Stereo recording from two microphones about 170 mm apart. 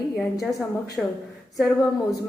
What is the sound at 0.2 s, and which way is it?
Speech, centre (ahead or behind).